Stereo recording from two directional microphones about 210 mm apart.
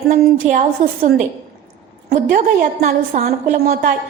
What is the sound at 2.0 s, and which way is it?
Speech, 45° right (ahead or behind).